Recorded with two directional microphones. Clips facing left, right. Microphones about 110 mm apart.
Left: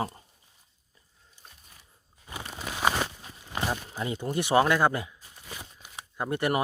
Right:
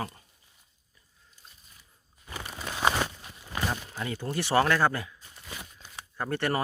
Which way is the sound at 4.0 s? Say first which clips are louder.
Left 3 dB; 20° left (ahead or behind).